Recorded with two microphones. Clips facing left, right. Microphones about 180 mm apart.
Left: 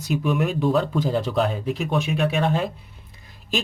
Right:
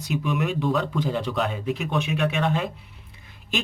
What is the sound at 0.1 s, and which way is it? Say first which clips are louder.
Speech: left 3 dB; 40° left (ahead or behind).